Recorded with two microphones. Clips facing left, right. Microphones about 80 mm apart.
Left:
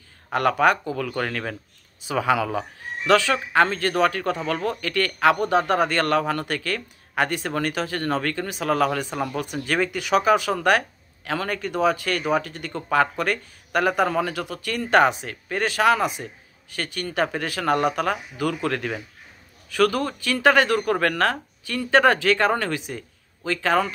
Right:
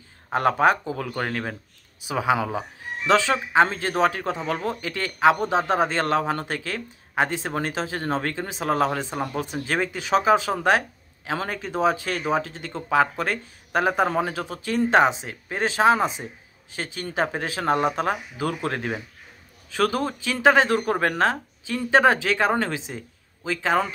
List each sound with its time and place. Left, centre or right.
0.3 s speech: right